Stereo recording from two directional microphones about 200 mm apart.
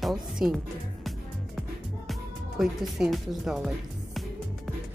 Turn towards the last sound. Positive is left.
turn(degrees=0)  # may be behind; listen again after turning